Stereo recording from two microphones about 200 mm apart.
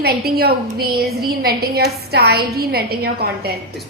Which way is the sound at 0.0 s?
50° right (ahead or behind).